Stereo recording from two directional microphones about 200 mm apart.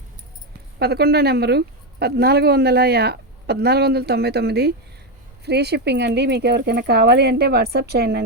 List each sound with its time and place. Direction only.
0.8 s speech: 55° right (ahead or behind)